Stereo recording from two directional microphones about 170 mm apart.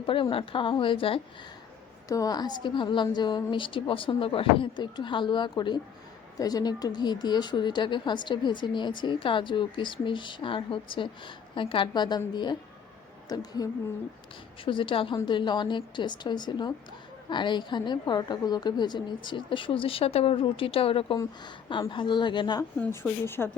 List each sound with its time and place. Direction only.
0.0 s a woman's voice: 30° left (ahead or behind)
2.0 s speech: 20° left (ahead or behind)
22.8 s speech: 10° left (ahead or behind)